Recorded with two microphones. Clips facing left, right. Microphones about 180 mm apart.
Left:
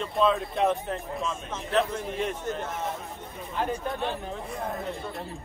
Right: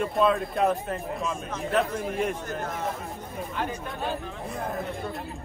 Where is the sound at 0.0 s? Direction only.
5° right (ahead or behind).